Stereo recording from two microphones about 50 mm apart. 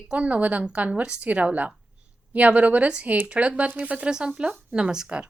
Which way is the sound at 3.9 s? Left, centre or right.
Centre.